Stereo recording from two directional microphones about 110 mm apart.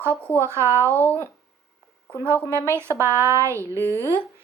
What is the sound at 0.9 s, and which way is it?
Speech, 15° left (ahead or behind).